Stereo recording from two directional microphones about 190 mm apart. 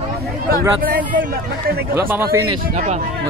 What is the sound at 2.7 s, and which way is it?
Speech, 40° right (ahead or behind).